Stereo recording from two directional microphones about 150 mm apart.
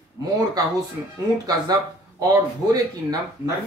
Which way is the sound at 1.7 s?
25° right (ahead or behind).